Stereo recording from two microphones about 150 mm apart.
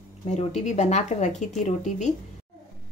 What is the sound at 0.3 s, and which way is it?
Speech, 50° left (ahead or behind).